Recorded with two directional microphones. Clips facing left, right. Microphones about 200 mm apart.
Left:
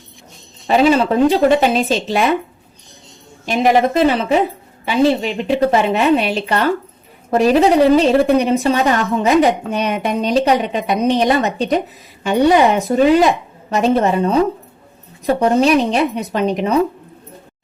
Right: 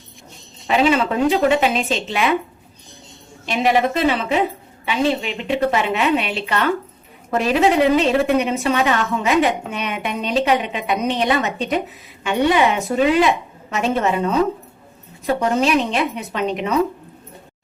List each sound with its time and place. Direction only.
0.7 s a woman's voice: 40° left (ahead or behind)
3.4 s a woman's voice: 45° left (ahead or behind)